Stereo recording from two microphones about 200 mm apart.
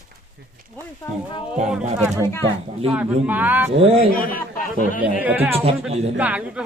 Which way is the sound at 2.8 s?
10° right (ahead or behind).